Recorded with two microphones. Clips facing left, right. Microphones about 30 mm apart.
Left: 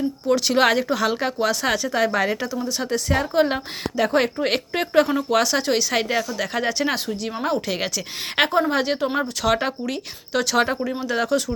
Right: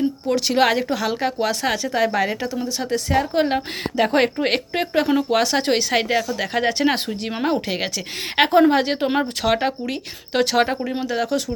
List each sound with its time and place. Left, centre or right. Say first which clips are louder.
0.3 s a woman's voice: left 1 dB; centre
3.9 s speech: right 2 dB; right
5.6 s speech: right 1 dB; right
5.9 s speech: right 2 dB; centre; by 7.3 s right
7.4 s speech: right 2 dB; centre
10.3 s speech: right 2 dB; right
11.1 s a woman's voice: left 2 dB; centre